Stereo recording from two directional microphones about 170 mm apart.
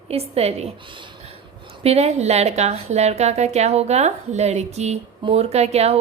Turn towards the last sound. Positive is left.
turn(degrees=-40)  # may be behind; listen again after turning